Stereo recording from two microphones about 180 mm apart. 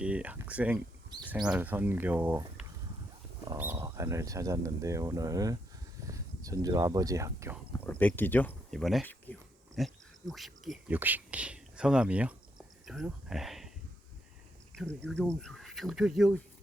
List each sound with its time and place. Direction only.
0.0 s speech: 10° right (ahead or behind)
7.7 s speech: 10° left (ahead or behind)
14.8 s speech: 5° left (ahead or behind)